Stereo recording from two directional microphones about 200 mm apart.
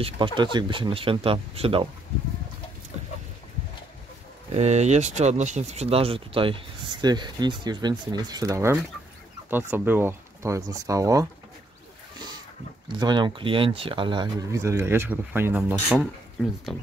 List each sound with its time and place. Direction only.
0.0 s speech: 25° right (ahead or behind)
4.6 s speech: 35° right (ahead or behind); by 11.2 s 15° right (ahead or behind)
12.9 s speech: 20° right (ahead or behind)
16.7 s speech: centre (ahead or behind)